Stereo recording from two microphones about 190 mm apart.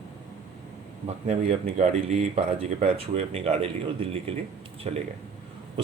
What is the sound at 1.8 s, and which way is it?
Speech, 35° right (ahead or behind).